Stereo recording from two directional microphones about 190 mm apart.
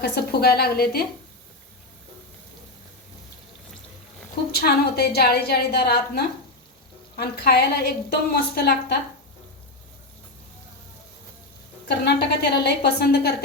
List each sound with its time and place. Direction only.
0.0 s a woman's voice: 55° left (ahead or behind)
4.5 s a woman's voice: 55° left (ahead or behind)
11.9 s a woman's voice: 60° left (ahead or behind)